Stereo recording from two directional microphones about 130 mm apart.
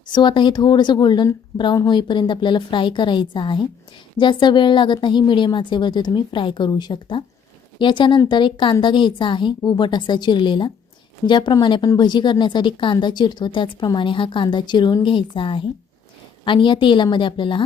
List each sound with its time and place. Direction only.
0.1 s speech: 35° left (ahead or behind)